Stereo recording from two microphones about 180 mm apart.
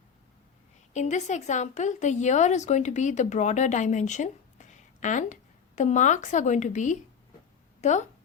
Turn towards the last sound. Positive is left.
turn(degrees=40)  # may be behind; listen again after turning